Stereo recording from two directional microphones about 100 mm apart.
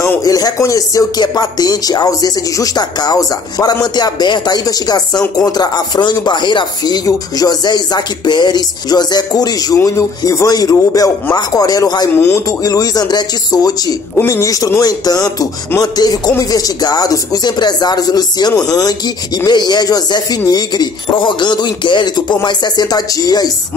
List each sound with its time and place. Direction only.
0.2 s speech: 40° left (ahead or behind)
12.1 s speech: 20° left (ahead or behind)
12.4 s speech: 40° left (ahead or behind)
14.1 s speech: 30° left (ahead or behind)